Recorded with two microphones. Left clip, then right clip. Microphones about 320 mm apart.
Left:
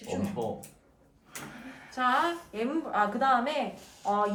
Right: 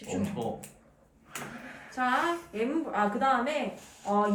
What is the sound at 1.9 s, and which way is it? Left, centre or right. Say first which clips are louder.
A woman's voice: left 1 dB; centre.